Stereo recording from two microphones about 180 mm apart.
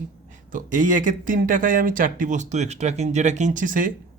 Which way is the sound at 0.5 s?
45° right (ahead or behind).